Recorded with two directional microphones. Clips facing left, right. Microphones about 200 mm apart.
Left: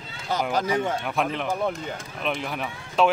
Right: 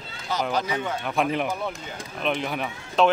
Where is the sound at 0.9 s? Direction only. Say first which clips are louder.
Right 1 dB; 5° left (ahead or behind).